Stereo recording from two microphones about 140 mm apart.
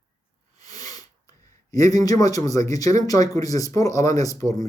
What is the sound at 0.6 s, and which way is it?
Sneeze, 25° left (ahead or behind).